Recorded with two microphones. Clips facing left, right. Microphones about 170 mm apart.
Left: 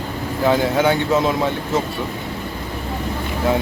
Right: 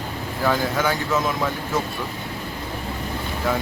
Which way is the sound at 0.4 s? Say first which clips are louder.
Left 5 dB; 25° left (ahead or behind).